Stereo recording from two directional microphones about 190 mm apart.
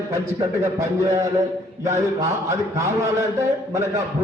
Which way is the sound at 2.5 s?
15° right (ahead or behind).